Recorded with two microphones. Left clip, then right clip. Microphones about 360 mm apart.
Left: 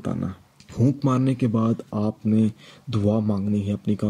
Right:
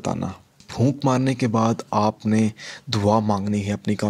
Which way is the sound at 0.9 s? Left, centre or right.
Centre.